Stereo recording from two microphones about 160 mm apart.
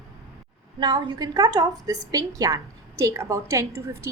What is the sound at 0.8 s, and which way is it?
A woman's voice, 25° right (ahead or behind).